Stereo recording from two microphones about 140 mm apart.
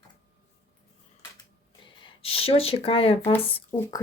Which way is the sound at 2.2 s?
45° left (ahead or behind).